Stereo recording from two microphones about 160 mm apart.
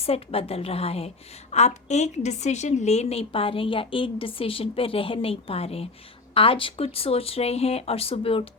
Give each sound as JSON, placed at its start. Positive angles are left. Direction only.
{"t": 0.0, "sound": "a woman's voice", "side_deg": 35}